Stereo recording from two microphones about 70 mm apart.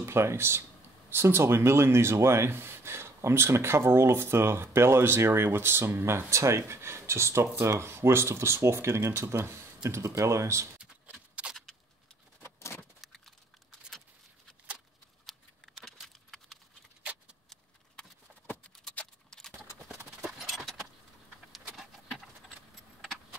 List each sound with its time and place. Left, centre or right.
0.0 s speech: right
10.8 s a sound: centre
12.4 s vehicle: left
13.0 s keys jangling: centre
15.8 s keys jangling: centre
17.0 s keys jangling: centre
19.0 s keys jangling: left
19.3 s clip-clop: centre
20.2 s keys jangling: centre
21.7 s vehicle: centre